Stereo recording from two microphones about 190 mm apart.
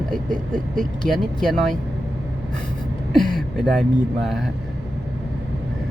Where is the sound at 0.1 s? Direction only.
5° left (ahead or behind).